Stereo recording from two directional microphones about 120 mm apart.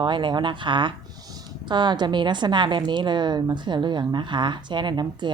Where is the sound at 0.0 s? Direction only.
40° right (ahead or behind).